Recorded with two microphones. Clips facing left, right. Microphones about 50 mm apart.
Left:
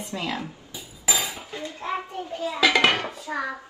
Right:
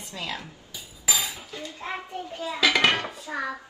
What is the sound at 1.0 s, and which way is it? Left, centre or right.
Dishes, left.